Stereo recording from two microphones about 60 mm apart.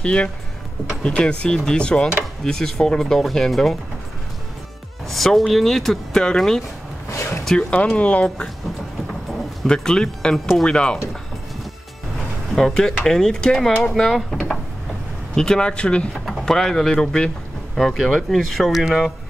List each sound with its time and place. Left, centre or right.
0.0 s speech: centre
5.0 s speech: centre; by 8.5 s left
9.7 s speech: centre
12.5 s speech: centre
16.4 s speech: centre